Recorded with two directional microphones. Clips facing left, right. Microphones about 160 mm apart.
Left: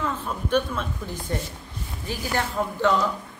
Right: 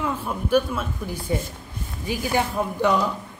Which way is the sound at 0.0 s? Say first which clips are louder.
Right 2 dB; 10° right (ahead or behind).